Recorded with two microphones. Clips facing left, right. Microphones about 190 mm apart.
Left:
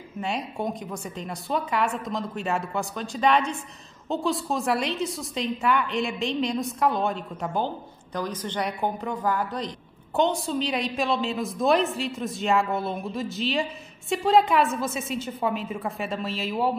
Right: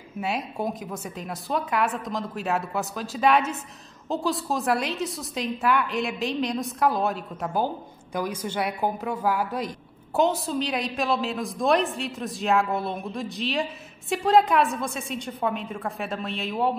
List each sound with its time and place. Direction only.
0.2 s a woman's voice: 5° right (ahead or behind)